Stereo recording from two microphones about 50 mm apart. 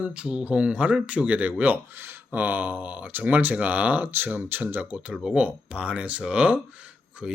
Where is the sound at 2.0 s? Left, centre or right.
Right.